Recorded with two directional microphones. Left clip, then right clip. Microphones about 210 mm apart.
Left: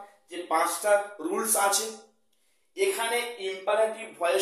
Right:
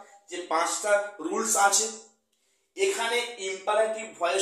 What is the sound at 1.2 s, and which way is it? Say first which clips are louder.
Speech: right 2 dB; 15° left (ahead or behind).